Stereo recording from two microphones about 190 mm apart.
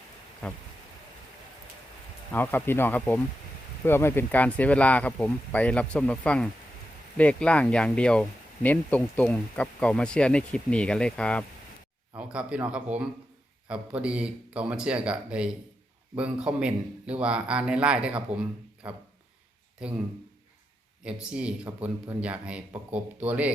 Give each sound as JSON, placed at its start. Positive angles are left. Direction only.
{"t": 2.3, "sound": "speech", "side_deg": 10}
{"t": 12.1, "sound": "speech", "side_deg": -5}
{"t": 21.0, "sound": "speech", "side_deg": -5}